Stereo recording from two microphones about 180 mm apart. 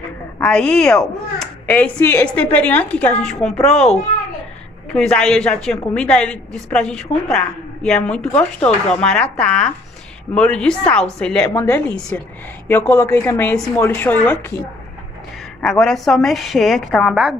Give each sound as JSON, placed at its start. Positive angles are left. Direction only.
{"t": 0.4, "sound": "speech", "side_deg": 5}
{"t": 4.9, "sound": "speech", "side_deg": 5}
{"t": 11.5, "sound": "a woman's voice", "side_deg": 15}
{"t": 15.6, "sound": "speech", "side_deg": 0}